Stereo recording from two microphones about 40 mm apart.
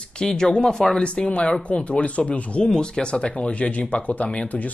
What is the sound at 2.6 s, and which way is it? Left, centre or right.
Speech, centre.